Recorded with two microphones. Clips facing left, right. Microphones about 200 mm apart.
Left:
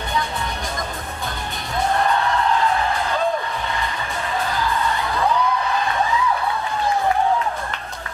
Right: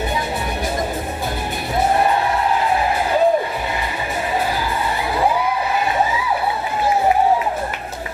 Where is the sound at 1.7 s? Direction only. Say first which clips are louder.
Right 3 dB; 10° right (ahead or behind).